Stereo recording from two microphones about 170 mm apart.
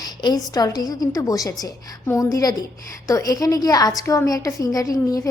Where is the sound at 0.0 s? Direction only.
25° left (ahead or behind).